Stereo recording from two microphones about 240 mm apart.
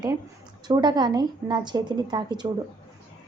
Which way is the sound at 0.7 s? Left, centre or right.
Centre.